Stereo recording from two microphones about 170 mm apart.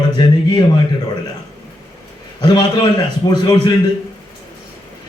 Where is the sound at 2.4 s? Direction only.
25° left (ahead or behind).